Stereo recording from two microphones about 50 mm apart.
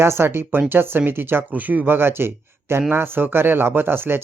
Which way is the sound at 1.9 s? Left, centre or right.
Right.